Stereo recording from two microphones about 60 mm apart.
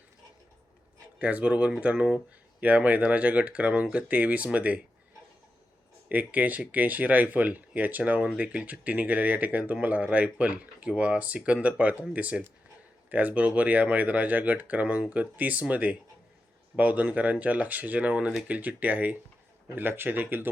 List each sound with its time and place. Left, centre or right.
1.2 s speech: right
6.1 s speech: right